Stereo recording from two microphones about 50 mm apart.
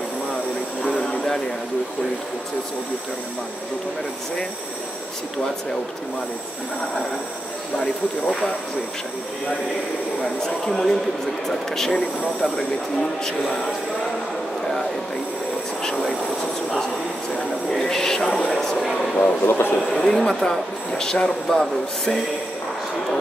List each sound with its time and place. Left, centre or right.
0.8 s a sound: centre
7.7 s speech: centre
10.7 s speech: centre
17.6 s speech: centre
19.4 s a man's voice: left
19.9 s speech: centre